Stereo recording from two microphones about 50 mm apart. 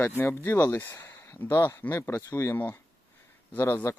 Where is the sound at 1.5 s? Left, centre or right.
Left.